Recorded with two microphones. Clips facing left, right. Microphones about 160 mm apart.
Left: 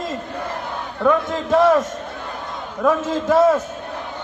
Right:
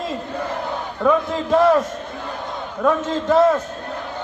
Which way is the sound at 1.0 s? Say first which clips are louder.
Even; centre (ahead or behind).